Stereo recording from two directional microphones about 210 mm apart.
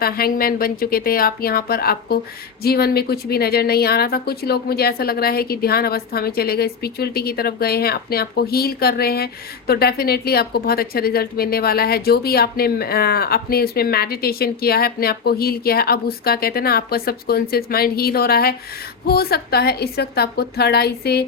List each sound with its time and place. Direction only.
0.0 s a woman's voice: 45° left (ahead or behind)